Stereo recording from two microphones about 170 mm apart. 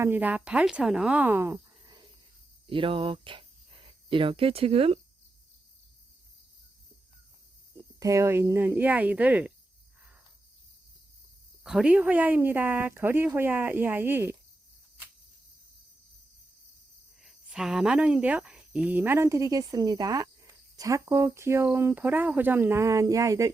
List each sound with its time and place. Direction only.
0.0 s speech: 10° right (ahead or behind)
1.8 s a sound: 25° right (ahead or behind)
2.6 s speech: 30° right (ahead or behind)
7.9 s speech: 20° right (ahead or behind)
11.6 s speech: 5° right (ahead or behind)
17.2 s speech: 5° right (ahead or behind); by 23.5 s 20° right (ahead or behind)